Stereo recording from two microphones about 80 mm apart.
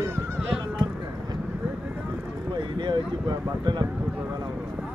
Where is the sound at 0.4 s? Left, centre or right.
Centre.